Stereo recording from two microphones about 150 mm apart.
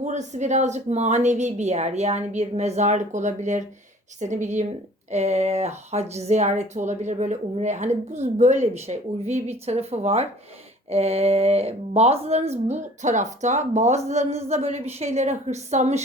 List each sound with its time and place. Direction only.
0.0 s speech: 50° right (ahead or behind)